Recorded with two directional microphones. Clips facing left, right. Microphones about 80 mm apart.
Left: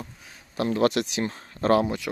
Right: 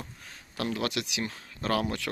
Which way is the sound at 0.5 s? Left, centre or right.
Left.